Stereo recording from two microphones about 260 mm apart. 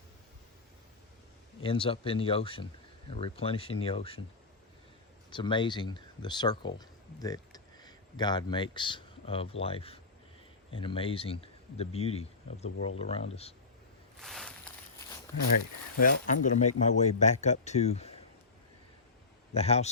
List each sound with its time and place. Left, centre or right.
1.6 s speech: centre
5.3 s speech: centre
14.2 s a sound: centre
15.3 s speech: centre
16.0 s speech: left
19.5 s speech: left